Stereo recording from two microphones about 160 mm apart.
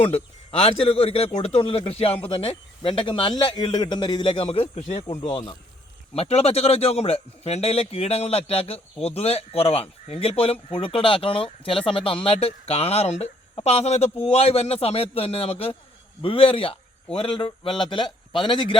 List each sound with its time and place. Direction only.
0.0 s a man's voice: 40° left (ahead or behind)
6.1 s a man's voice: 40° left (ahead or behind)